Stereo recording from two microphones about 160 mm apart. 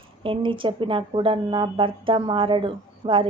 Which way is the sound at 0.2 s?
30° right (ahead or behind).